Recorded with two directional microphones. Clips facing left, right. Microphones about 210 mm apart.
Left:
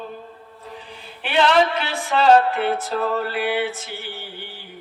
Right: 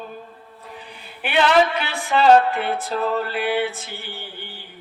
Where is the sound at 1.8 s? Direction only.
35° left (ahead or behind).